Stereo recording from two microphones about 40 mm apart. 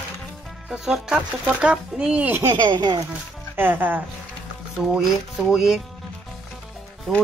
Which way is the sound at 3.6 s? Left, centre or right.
Right.